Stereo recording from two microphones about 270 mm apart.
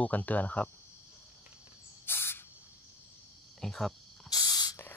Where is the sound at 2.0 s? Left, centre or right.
Centre.